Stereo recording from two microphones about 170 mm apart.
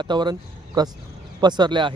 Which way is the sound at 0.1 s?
25° right (ahead or behind).